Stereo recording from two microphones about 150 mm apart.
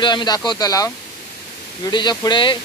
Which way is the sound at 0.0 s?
30° left (ahead or behind).